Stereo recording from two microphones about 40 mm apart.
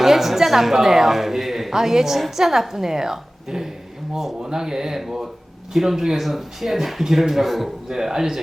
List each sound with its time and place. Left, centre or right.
0.0 s a woman's voice: centre
4.4 s speech: centre
7.9 s speech: centre